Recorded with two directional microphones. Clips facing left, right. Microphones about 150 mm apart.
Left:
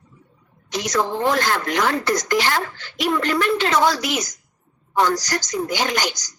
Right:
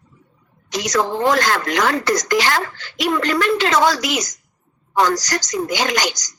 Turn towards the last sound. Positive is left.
turn(degrees=-90)